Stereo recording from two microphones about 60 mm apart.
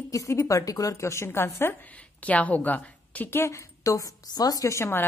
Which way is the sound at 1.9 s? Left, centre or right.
Left.